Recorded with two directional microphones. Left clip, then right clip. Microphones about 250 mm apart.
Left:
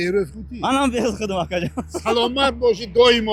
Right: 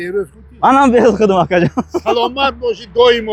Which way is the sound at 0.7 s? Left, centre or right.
Right.